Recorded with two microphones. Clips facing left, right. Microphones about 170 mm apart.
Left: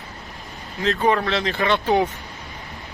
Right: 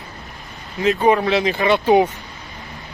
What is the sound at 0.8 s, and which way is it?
Speech, 20° right (ahead or behind).